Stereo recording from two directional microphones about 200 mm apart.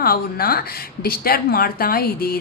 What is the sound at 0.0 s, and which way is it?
Speech, 50° left (ahead or behind).